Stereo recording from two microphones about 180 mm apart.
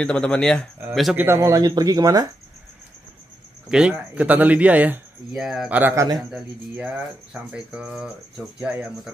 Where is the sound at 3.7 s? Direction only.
5° right (ahead or behind).